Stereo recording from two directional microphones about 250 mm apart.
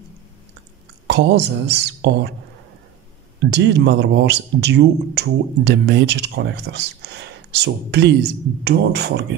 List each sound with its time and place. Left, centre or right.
1.0 s speech: right
3.4 s speech: right